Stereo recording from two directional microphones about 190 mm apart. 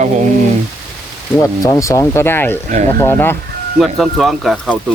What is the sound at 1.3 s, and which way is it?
Speech, 15° left (ahead or behind).